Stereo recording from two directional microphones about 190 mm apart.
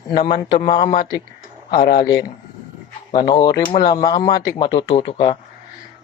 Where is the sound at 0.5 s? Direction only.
25° left (ahead or behind).